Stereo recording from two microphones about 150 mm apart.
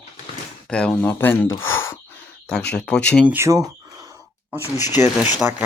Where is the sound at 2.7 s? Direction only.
5° left (ahead or behind).